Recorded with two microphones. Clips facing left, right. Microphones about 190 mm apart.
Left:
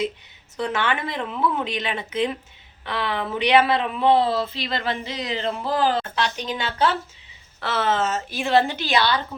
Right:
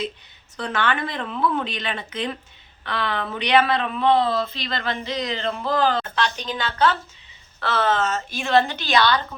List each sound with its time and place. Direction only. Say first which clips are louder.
0.5 s speech: even; 20° left (ahead or behind)
7.6 s speech: right 2 dB; 25° left (ahead or behind)
8.0 s speech: left 1 dB; 10° left (ahead or behind)